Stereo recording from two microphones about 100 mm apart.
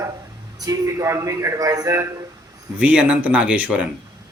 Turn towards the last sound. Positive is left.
turn(degrees=-15)  # may be behind; listen again after turning